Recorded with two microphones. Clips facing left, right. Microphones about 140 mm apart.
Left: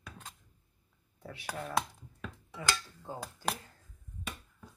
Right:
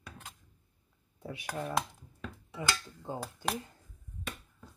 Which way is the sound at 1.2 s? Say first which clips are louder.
Right 4 dB; 15° right (ahead or behind).